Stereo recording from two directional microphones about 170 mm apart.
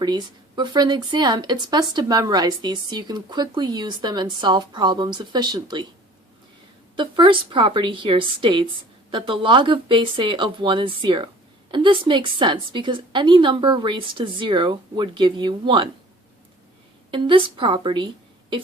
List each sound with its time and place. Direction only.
0.0 s speech: 25° right (ahead or behind)
6.9 s speech: 30° right (ahead or behind)
17.1 s speech: 30° right (ahead or behind)